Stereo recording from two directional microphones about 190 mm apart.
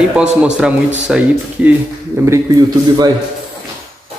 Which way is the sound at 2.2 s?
15° right (ahead or behind).